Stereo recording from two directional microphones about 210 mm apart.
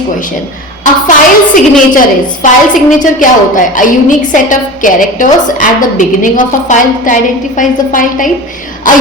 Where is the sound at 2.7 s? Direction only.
40° left (ahead or behind).